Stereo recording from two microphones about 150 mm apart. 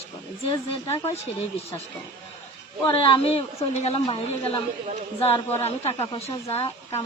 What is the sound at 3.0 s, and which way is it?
A woman's voice, 40° left (ahead or behind).